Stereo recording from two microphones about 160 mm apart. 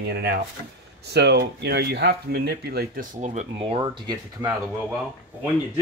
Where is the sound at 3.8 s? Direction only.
25° right (ahead or behind).